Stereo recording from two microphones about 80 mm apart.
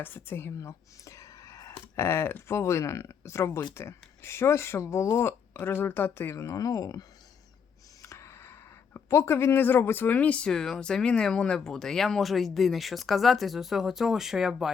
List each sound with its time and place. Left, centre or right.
0.0 s speech: left
6.3 s speech: left
8.0 s speech: left; by 14.7 s centre